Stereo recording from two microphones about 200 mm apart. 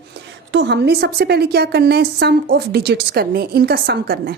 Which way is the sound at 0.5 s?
60° right (ahead or behind).